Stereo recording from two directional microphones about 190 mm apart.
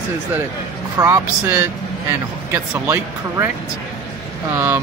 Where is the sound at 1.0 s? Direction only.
15° right (ahead or behind).